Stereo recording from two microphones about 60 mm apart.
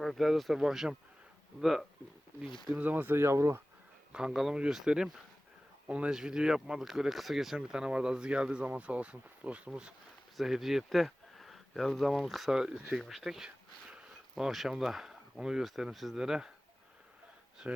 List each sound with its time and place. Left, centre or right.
0.0 s speech: centre
2.7 s speech: right
4.1 s speech: centre
10.3 s speech: centre